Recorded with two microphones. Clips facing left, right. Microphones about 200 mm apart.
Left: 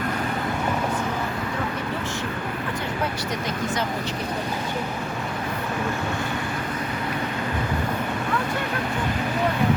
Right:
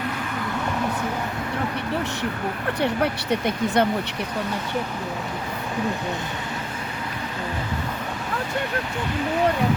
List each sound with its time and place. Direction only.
2.8 s speech: 65° right (ahead or behind)